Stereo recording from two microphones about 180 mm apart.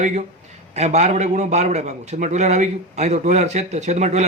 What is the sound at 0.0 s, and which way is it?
A man's voice, 40° right (ahead or behind).